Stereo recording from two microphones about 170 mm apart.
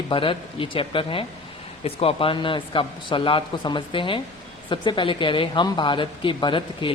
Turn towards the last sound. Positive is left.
turn(degrees=30)  # may be behind; listen again after turning